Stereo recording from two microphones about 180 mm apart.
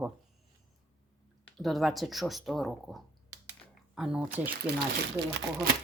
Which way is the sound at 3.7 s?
5° right (ahead or behind).